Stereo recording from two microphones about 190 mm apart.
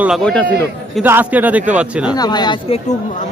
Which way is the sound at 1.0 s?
10° right (ahead or behind).